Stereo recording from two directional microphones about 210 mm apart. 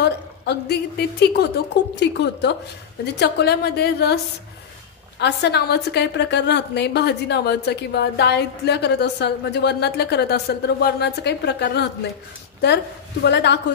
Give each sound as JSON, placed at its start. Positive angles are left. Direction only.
{"t": 0.0, "sound": "a woman's voice", "side_deg": 50}
{"t": 5.2, "sound": "a woman's voice", "side_deg": 50}